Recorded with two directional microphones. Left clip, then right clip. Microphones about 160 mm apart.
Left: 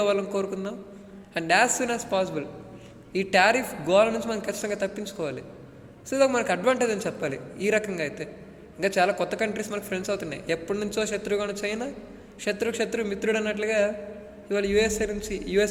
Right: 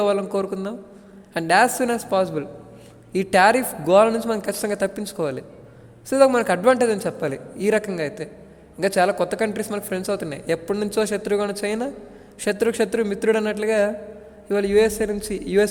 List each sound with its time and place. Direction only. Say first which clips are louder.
0.0 s speech: right 4 dB; 30° right (ahead or behind)